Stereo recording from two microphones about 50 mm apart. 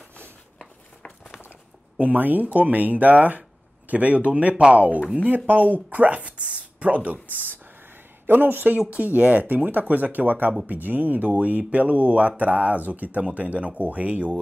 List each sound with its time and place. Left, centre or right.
2.0 s speech: right
7.3 s a sound: right
8.3 s speech: right
8.9 s speech: right